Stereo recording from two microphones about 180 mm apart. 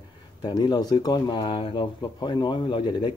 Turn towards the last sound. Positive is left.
turn(degrees=25)  # may be behind; listen again after turning